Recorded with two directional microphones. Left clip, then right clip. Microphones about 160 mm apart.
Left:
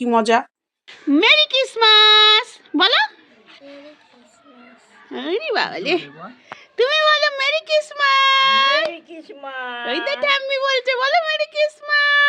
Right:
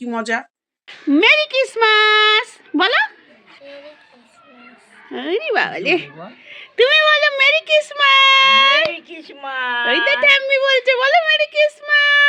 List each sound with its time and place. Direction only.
0.0 s speech: 25° left (ahead or behind)
0.9 s speech: centre (ahead or behind)
5.1 s speech: 5° left (ahead or behind)
8.9 s speech: 25° left (ahead or behind)
9.8 s speech: 5° right (ahead or behind)